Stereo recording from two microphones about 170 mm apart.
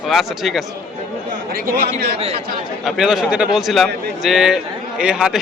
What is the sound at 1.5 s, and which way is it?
Speech, 55° right (ahead or behind).